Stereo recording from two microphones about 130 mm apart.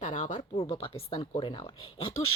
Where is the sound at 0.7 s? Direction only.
45° left (ahead or behind).